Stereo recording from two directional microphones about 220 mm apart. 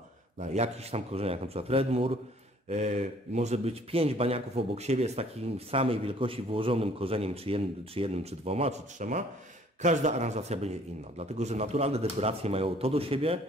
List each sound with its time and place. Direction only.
0.4 s speech: 30° right (ahead or behind)